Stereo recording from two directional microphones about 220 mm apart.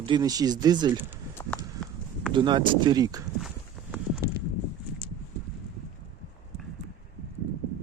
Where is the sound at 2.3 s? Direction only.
20° right (ahead or behind).